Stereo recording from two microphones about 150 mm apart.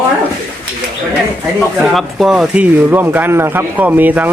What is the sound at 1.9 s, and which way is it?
Speech, centre (ahead or behind).